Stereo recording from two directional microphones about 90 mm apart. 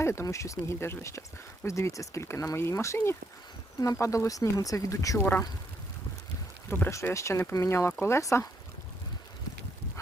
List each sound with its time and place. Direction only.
0.0 s speech: 30° left (ahead or behind)
6.7 s speech: 25° left (ahead or behind)